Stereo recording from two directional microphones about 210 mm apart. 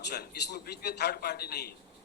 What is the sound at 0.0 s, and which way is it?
A man's voice, 55° left (ahead or behind).